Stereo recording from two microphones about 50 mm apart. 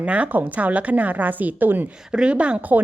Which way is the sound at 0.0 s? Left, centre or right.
Right.